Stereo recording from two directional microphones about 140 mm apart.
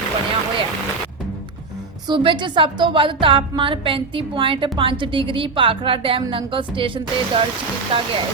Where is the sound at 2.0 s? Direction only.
35° right (ahead or behind).